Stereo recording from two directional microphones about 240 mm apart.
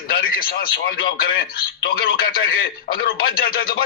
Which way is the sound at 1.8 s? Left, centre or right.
Left.